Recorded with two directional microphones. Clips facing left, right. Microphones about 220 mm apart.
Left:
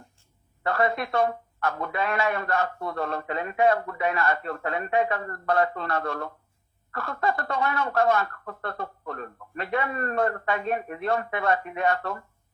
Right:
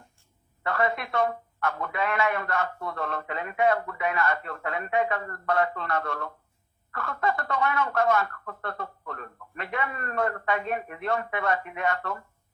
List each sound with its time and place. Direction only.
0.6 s speech: 35° left (ahead or behind)